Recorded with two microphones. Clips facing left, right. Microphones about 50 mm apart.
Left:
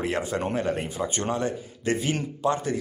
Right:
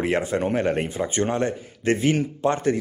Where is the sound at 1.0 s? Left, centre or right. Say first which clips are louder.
Right 4 dB; right.